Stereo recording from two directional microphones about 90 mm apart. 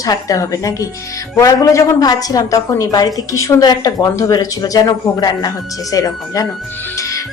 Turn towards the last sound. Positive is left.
turn(degrees=35)  # may be behind; listen again after turning